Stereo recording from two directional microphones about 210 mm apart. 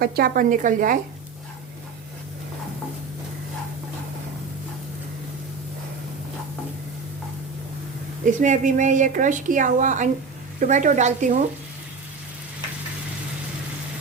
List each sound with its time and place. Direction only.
0.0 s a woman's voice: 45° right (ahead or behind)
8.2 s a woman's voice: 40° right (ahead or behind)